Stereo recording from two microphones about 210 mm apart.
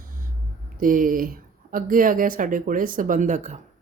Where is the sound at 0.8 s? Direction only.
40° right (ahead or behind).